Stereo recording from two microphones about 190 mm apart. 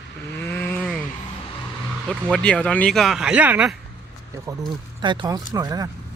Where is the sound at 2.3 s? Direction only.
5° left (ahead or behind); by 5.9 s 20° right (ahead or behind).